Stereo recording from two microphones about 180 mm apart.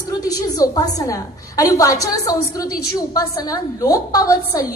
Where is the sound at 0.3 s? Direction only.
20° left (ahead or behind).